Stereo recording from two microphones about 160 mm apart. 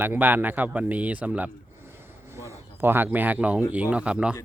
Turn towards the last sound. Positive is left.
turn(degrees=-5)  # may be behind; listen again after turning